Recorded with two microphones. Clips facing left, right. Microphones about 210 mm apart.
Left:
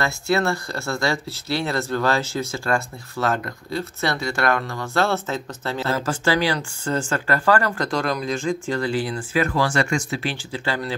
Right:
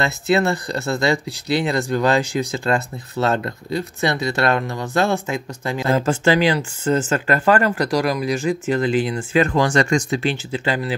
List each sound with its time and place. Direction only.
0.0 s speech: 20° right (ahead or behind)